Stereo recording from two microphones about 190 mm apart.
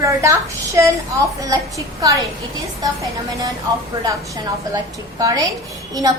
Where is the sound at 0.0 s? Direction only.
15° right (ahead or behind).